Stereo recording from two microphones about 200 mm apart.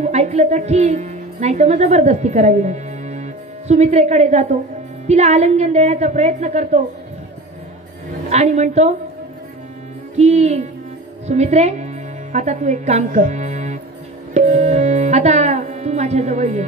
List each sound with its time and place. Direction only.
0.0 s a woman's voice: 35° right (ahead or behind)
8.3 s a woman's voice: 35° right (ahead or behind)
10.1 s a woman's voice: 35° right (ahead or behind)
14.3 s music: 35° right (ahead or behind)